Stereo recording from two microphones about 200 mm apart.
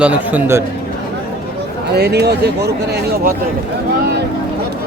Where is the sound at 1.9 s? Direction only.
55° right (ahead or behind).